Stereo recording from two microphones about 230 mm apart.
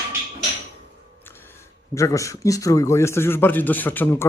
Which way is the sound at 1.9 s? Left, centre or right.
Centre.